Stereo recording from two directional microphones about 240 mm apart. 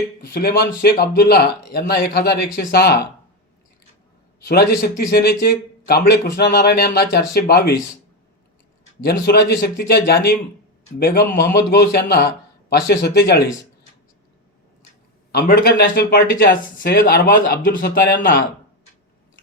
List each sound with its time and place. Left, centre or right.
0.3 s speech: left
4.4 s speech: left
9.0 s speech: left
15.3 s speech: left